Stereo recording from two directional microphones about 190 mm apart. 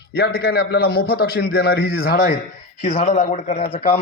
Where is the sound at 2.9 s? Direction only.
40° left (ahead or behind).